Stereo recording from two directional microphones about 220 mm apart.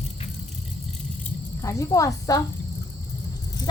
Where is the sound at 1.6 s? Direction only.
15° left (ahead or behind).